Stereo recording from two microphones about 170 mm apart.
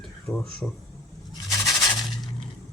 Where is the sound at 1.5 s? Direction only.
20° left (ahead or behind).